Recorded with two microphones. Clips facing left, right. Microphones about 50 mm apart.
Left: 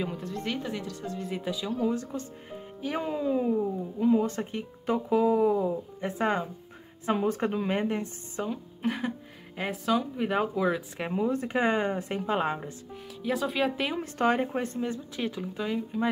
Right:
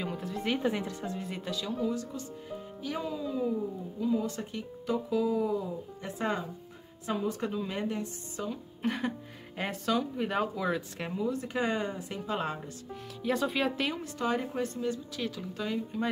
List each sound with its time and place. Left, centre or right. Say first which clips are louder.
0.0 s speech: left 1 dB; centre
0.6 s speech: right 3 dB; centre
1.2 s speech: left 3 dB; centre
1.9 s speech: left 3 dB; left
8.8 s speech: left 1 dB; centre
11.1 s speech: left 4 dB; left
12.9 s speech: even; centre
14.0 s speech: left 5 dB; left; by 16.1 s centre